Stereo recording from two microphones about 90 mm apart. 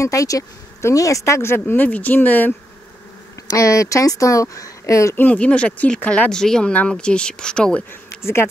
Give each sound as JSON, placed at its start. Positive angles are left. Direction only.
{"t": 0.0, "sound": "speech", "side_deg": 40}
{"t": 3.4, "sound": "speech", "side_deg": 40}
{"t": 5.1, "sound": "speech", "side_deg": 20}
{"t": 8.2, "sound": "speech", "side_deg": 30}